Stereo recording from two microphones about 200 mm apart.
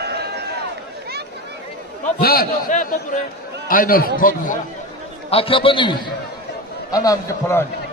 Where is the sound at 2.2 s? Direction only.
50° left (ahead or behind).